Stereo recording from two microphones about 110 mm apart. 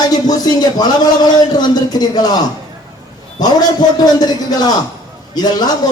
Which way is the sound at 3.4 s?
40° left (ahead or behind).